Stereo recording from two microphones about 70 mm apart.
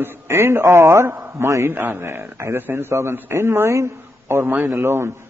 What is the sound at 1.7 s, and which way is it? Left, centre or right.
A man's voice, right.